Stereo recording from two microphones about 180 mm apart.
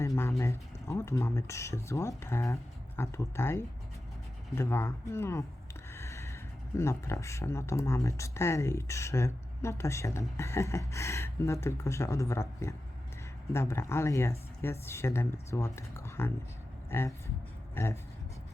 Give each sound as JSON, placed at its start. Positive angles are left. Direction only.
{"t": 0.2, "sound": "speech", "side_deg": 15}
{"t": 5.9, "sound": "a sound", "side_deg": 15}
{"t": 6.7, "sound": "speech", "side_deg": 15}